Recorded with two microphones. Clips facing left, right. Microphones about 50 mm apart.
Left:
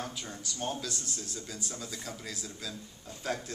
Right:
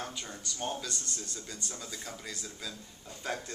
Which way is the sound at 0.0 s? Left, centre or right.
Centre.